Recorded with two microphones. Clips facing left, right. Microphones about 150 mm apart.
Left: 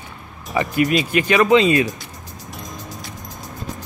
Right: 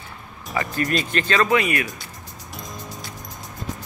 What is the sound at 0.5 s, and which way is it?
Speech, 15° left (ahead or behind).